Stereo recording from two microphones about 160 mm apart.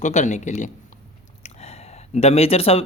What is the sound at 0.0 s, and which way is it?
Speech, 50° left (ahead or behind).